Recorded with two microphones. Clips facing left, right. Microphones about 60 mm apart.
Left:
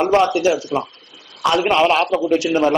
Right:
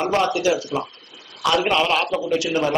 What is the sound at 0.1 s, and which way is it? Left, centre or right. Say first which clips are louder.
Speech: left 3 dB; left.